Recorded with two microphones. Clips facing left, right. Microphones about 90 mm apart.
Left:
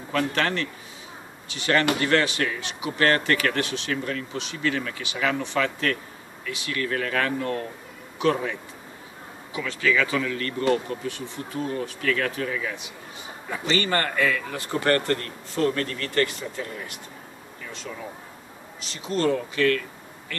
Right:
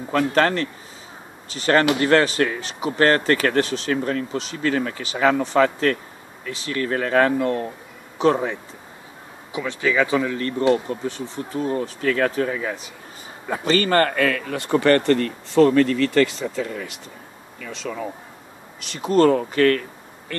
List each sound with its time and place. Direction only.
0.1 s speech: 40° right (ahead or behind)
9.5 s speech: 20° right (ahead or behind); by 12.9 s 35° right (ahead or behind)
13.5 s speech: 50° right (ahead or behind); by 17.9 s 90° right
18.8 s speech: 60° right (ahead or behind)